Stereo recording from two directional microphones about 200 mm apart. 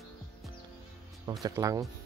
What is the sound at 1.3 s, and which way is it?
Speech, 20° right (ahead or behind).